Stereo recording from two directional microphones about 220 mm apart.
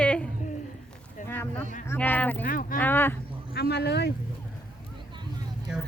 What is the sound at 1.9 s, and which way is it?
Speech, 10° left (ahead or behind).